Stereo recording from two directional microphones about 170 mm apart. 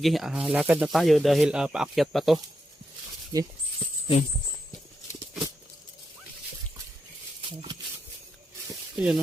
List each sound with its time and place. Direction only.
0.0 s speech: centre (ahead or behind)
3.3 s speech: 20° right (ahead or behind)
9.0 s speech: 5° right (ahead or behind)